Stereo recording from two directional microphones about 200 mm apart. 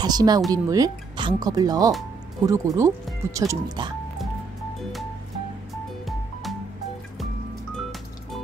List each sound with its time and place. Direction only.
0.0 s speech: 20° right (ahead or behind)